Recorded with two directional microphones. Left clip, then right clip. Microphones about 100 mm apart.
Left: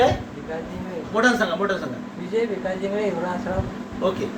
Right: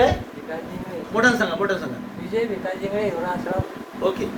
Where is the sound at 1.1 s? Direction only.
25° right (ahead or behind).